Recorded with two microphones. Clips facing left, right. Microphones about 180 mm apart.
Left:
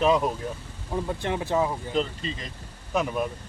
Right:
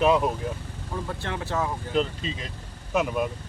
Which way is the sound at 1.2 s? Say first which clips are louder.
Left 4 dB; 15° left (ahead or behind).